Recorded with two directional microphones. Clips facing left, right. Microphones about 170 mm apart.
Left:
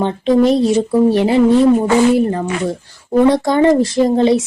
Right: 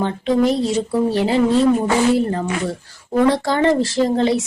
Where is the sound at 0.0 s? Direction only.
20° left (ahead or behind).